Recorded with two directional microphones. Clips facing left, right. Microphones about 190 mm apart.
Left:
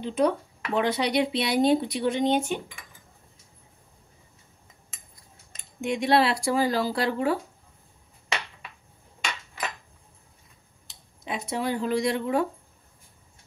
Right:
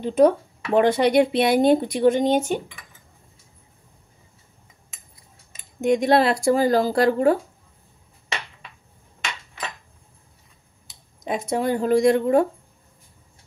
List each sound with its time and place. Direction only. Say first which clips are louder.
0.0 s speech: right 7 dB; 45° right (ahead or behind)
5.8 s speech: right 5 dB; 45° right (ahead or behind)
11.2 s speech: right 6 dB; 45° right (ahead or behind)